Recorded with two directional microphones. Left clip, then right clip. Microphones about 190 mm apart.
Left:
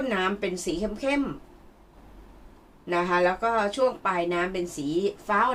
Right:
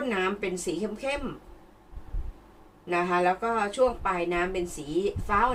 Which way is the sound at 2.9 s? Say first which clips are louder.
Left 1 dB; 40° left (ahead or behind).